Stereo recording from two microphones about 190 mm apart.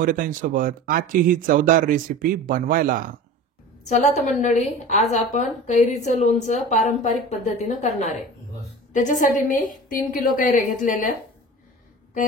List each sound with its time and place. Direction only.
0.0 s speech: 45° right (ahead or behind)
4.3 s a woman's voice: 40° left (ahead or behind)